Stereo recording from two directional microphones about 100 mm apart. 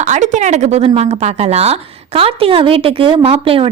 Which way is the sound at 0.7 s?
90° right.